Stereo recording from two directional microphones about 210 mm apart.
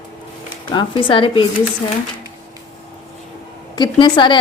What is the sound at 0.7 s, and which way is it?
Speech, 25° left (ahead or behind).